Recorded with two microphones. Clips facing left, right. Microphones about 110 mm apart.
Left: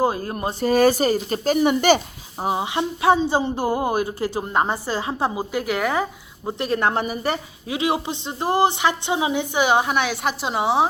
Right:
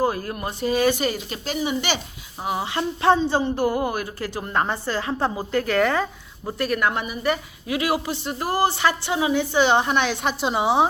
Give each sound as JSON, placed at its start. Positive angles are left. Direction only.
{"t": 0.0, "sound": "a woman's voice", "side_deg": 25}
{"t": 0.6, "sound": "speech", "side_deg": 40}
{"t": 2.5, "sound": "a woman's voice", "side_deg": 20}
{"t": 7.7, "sound": "a woman's voice", "side_deg": 25}